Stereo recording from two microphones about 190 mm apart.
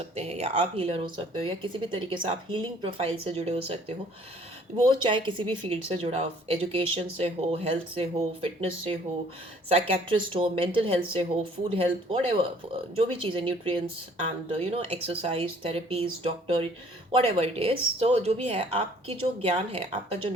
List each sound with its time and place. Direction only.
0.0 s speech: 35° right (ahead or behind)